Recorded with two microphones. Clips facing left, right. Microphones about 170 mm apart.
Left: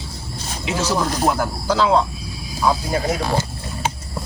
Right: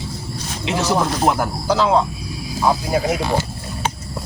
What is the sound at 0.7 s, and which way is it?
Speech, 20° right (ahead or behind).